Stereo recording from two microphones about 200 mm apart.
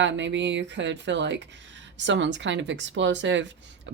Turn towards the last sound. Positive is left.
turn(degrees=-65)  # may be behind; listen again after turning